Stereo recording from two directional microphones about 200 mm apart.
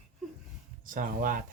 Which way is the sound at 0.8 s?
45° right (ahead or behind).